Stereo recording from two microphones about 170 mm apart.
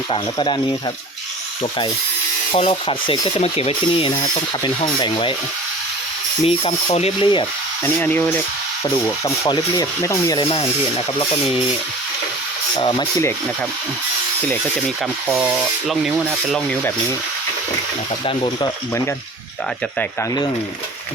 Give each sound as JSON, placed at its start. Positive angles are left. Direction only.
{"t": 0.1, "sound": "speech", "side_deg": 30}
{"t": 2.5, "sound": "speech", "side_deg": 35}
{"t": 6.4, "sound": "speech", "side_deg": 35}
{"t": 7.9, "sound": "speech", "side_deg": 10}
{"t": 10.4, "sound": "speech", "side_deg": 35}
{"t": 12.7, "sound": "speech", "side_deg": 25}
{"t": 15.4, "sound": "speech", "side_deg": -5}
{"t": 16.2, "sound": "speech", "side_deg": 5}
{"t": 18.3, "sound": "speech", "side_deg": 30}